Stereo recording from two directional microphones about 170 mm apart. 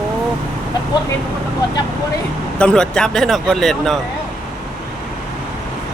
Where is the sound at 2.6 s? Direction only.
5° left (ahead or behind).